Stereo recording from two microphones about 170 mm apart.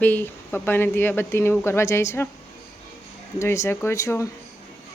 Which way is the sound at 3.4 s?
15° left (ahead or behind).